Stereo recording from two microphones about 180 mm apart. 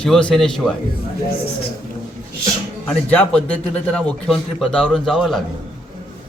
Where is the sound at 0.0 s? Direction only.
5° left (ahead or behind).